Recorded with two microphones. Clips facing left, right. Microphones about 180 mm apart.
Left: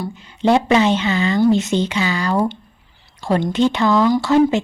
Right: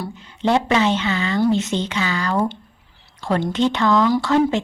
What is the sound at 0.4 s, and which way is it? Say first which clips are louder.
Speech: left 3 dB; 15° left (ahead or behind).